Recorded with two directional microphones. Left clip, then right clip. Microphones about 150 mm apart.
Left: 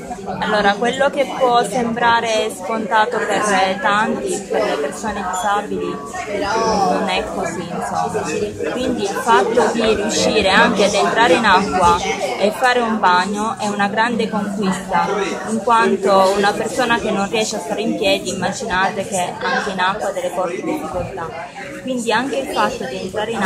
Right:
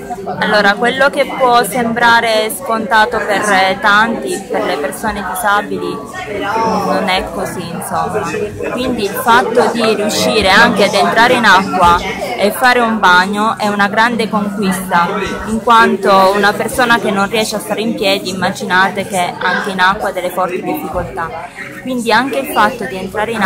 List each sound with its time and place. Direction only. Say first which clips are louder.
0.4 s speech: right 5 dB; 5° right (ahead or behind)
6.9 s speech: right 4 dB; 10° right (ahead or behind)
8.7 s speech: right 5 dB; 15° right (ahead or behind)
22.0 s a woman's voice: right 6 dB; 20° right (ahead or behind)